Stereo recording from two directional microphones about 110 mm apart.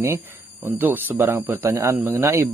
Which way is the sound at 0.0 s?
20° right (ahead or behind).